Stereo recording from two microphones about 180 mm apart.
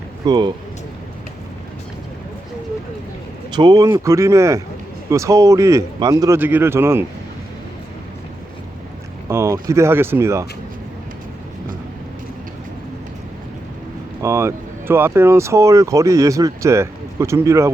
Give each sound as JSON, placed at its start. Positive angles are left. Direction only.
{"t": 0.3, "sound": "speech", "side_deg": -25}
{"t": 3.5, "sound": "speech", "side_deg": -20}
{"t": 9.3, "sound": "speech", "side_deg": -15}
{"t": 14.2, "sound": "speech", "side_deg": -15}